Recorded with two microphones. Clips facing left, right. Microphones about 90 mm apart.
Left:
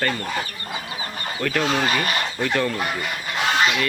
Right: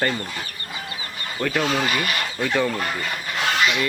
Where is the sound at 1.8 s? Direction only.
35° left (ahead or behind).